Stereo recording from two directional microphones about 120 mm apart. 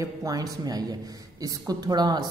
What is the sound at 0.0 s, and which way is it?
A man's voice, 30° right (ahead or behind).